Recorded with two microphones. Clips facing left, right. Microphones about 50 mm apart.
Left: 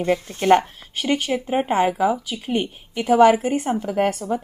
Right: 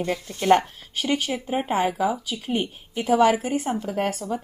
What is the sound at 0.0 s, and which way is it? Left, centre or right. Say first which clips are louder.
Speech: left 5 dB; left.